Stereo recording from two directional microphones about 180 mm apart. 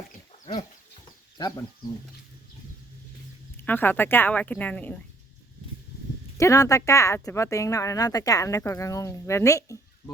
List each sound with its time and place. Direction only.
1.4 s speech: 20° left (ahead or behind)
3.6 s speech: 10° left (ahead or behind)
6.3 s speech: 20° left (ahead or behind)